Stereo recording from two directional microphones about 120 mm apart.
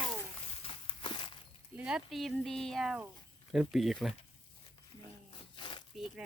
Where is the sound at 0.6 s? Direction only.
45° left (ahead or behind).